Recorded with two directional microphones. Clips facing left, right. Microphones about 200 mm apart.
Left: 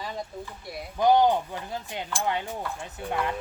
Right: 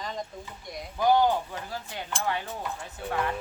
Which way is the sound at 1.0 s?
20° left (ahead or behind).